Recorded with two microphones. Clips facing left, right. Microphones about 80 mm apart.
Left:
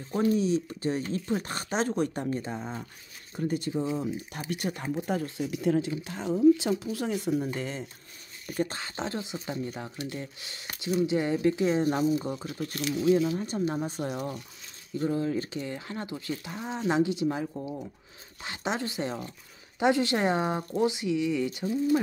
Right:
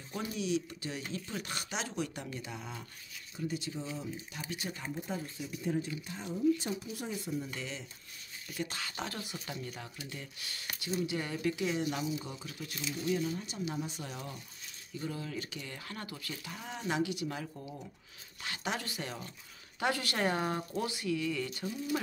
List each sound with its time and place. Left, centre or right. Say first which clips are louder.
0.1 s speech: left 9 dB; left
3.3 s speech: left 9 dB; left
4.9 s speech: left 9 dB; left
7.5 s speech: left 8 dB; left
13.4 s speech: left 8 dB; left
15.0 s speech: left 11 dB; left